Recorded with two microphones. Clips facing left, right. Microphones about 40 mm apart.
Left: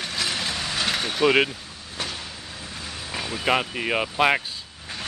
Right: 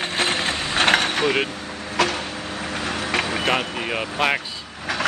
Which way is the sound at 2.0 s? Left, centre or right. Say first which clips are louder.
Right 11 dB; right.